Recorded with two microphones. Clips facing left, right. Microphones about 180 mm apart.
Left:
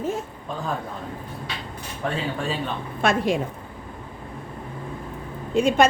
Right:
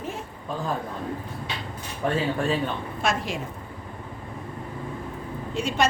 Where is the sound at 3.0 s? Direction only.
55° left (ahead or behind).